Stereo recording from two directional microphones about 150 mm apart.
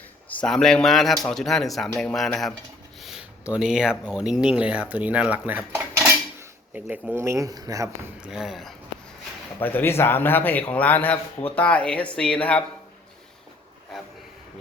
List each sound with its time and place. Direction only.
0.3 s a man's voice: 5° left (ahead or behind)
3.0 s a sound: 5° right (ahead or behind)
4.1 s speech: 5° right (ahead or behind); by 8.1 s 20° right (ahead or behind)
8.2 s a man's voice: 5° right (ahead or behind)
9.6 s a man's voice: 15° left (ahead or behind)